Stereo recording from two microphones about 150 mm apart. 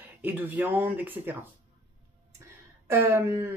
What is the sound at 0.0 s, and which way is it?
Speech, 10° right (ahead or behind).